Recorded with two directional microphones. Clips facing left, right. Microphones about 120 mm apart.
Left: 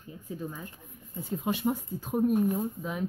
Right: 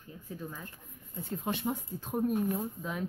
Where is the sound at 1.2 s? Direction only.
10° left (ahead or behind).